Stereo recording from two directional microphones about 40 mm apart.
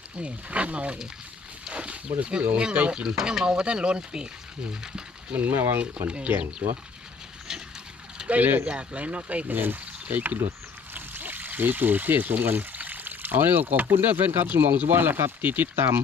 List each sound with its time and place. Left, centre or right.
0.2 s speech: right
5.3 s speech: right
5.5 s speech: right
6.6 s speech: right
8.2 s a sound: centre
8.6 s speech: right
9.5 s speech: right
10.9 s pour: right
13.9 s speech: right
15.7 s speech: right